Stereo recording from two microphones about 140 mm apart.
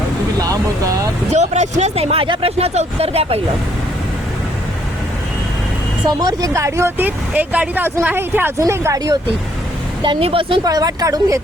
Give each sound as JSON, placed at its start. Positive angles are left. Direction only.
{"t": 1.3, "sound": "speech", "side_deg": -55}
{"t": 6.1, "sound": "speech", "side_deg": -25}
{"t": 10.0, "sound": "speech", "side_deg": -40}
{"t": 10.7, "sound": "speech", "side_deg": -25}